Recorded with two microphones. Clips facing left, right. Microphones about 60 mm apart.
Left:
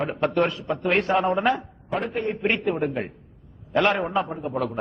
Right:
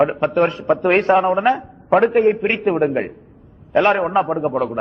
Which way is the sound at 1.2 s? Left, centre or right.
Centre.